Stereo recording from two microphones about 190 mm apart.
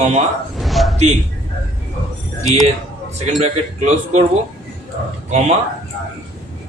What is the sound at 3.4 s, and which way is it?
Speech, 35° right (ahead or behind).